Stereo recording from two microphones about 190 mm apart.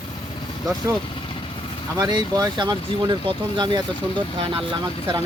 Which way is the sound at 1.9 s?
20° right (ahead or behind).